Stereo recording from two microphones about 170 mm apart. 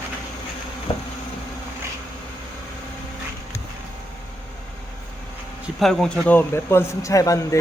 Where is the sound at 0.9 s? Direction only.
30° left (ahead or behind).